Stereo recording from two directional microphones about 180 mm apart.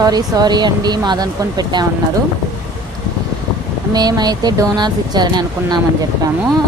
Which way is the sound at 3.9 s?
20° right (ahead or behind).